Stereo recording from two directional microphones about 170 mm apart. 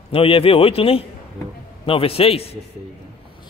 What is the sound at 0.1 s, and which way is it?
A man's voice, 35° left (ahead or behind).